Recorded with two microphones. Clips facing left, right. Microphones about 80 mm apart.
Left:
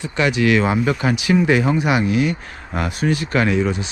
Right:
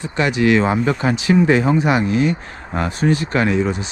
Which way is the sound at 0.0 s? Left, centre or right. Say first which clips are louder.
Right 1 dB; right.